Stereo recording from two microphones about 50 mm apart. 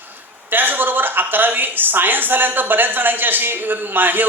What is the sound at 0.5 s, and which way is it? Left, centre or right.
A man's voice, right.